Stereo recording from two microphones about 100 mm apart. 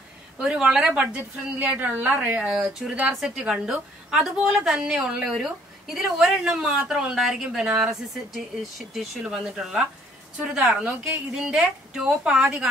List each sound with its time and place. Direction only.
0.4 s a woman's voice: 10° right (ahead or behind)
2.8 s a woman's voice: 5° right (ahead or behind)